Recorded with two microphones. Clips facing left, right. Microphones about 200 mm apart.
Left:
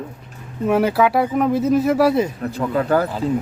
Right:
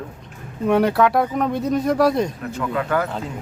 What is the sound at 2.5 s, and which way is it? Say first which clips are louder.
Speech: left 4 dB; 35° left (ahead or behind).